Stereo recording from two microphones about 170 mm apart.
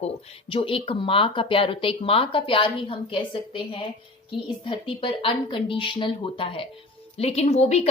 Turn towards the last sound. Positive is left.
turn(degrees=40)  # may be behind; listen again after turning